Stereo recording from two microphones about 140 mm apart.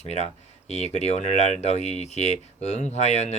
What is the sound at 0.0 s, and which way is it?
Speech, 50° left (ahead or behind).